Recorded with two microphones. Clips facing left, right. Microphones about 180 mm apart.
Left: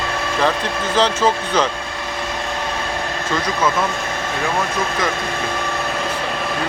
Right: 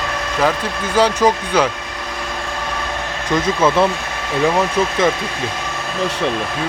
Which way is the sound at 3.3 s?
25° right (ahead or behind).